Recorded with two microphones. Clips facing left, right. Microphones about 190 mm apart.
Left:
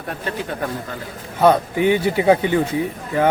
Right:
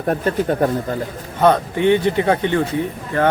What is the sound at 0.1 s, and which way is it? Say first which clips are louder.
Speech: right 8 dB; 45° right (ahead or behind).